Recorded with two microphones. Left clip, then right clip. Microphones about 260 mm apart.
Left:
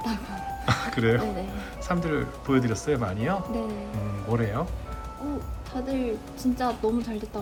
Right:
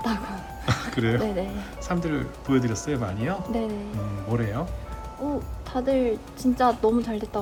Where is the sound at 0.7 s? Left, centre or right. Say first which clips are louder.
Left 2 dB; centre.